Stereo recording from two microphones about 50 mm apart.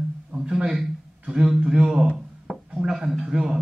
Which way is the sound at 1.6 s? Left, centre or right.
Right.